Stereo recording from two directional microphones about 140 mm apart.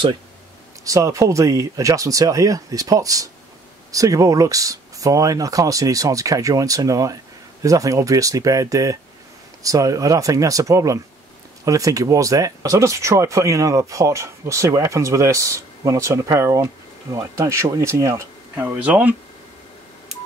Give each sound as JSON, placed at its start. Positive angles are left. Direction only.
{"t": 0.8, "sound": "speech", "side_deg": -20}